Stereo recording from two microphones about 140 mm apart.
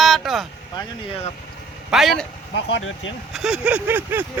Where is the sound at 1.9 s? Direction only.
Centre (ahead or behind).